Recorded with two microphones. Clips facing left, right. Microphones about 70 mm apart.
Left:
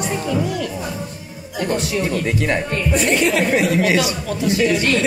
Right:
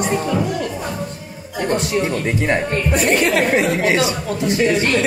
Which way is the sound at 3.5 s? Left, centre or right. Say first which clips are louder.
Even; right.